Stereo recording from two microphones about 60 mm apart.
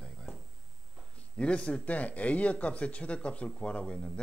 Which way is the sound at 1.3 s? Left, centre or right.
Centre.